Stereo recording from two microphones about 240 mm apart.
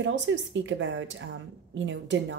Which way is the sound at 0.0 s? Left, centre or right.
Right.